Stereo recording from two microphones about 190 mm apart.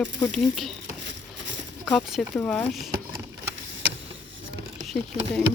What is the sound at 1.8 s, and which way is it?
Speech, centre (ahead or behind).